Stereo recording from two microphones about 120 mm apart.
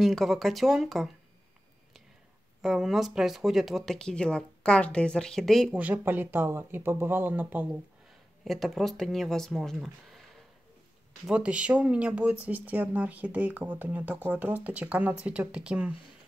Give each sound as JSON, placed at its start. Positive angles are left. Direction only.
{"t": 0.0, "sound": "speech", "side_deg": 0}
{"t": 2.6, "sound": "speech", "side_deg": 0}
{"t": 5.8, "sound": "speech", "side_deg": -15}
{"t": 8.5, "sound": "speech", "side_deg": 0}
{"t": 11.2, "sound": "speech", "side_deg": -10}